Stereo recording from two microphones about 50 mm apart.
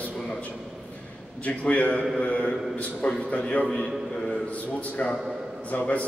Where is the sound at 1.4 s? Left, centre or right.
Left.